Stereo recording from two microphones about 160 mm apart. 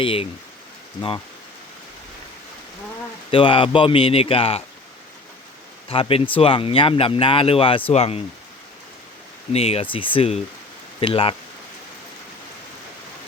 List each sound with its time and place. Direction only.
0.0 s speech: 35° left (ahead or behind)
3.3 s speech: 30° left (ahead or behind)
5.9 s speech: 35° left (ahead or behind)
9.5 s speech: 40° left (ahead or behind)